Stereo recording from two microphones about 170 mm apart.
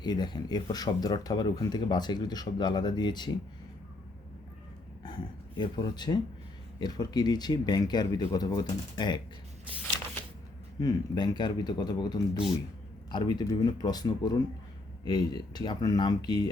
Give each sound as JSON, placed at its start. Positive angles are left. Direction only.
{"t": 0.0, "sound": "speech", "side_deg": 25}
{"t": 5.0, "sound": "speech", "side_deg": 25}
{"t": 10.8, "sound": "speech", "side_deg": 25}